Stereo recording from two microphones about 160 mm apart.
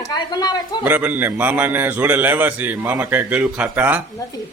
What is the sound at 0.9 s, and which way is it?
Speech, 10° right (ahead or behind).